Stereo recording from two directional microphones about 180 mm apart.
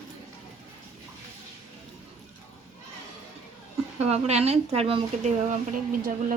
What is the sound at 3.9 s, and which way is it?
Speech, 35° right (ahead or behind).